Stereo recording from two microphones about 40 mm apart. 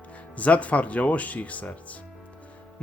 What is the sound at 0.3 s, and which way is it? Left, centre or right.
Speech, left.